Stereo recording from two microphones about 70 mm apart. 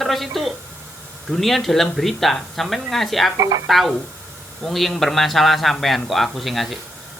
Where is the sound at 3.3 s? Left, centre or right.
Right.